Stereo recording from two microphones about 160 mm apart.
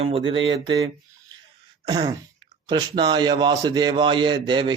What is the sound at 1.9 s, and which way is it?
A man's voice, 30° right (ahead or behind).